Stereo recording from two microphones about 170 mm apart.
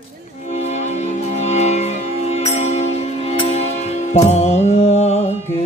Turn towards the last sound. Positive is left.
turn(degrees=35)  # may be behind; listen again after turning